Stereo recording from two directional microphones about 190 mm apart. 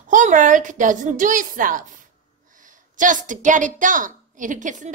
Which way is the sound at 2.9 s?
45° right (ahead or behind).